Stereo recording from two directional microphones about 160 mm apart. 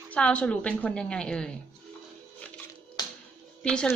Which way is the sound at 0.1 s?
10° left (ahead or behind).